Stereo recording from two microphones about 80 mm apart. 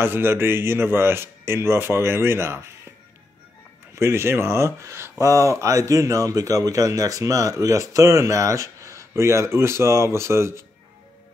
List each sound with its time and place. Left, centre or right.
0.0 s speech: right
3.9 s speech: right